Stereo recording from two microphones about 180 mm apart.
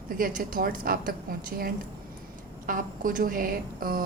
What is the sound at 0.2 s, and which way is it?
A woman's voice, 50° right (ahead or behind).